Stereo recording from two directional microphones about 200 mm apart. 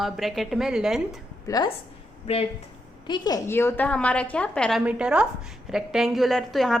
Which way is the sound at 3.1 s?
20° left (ahead or behind).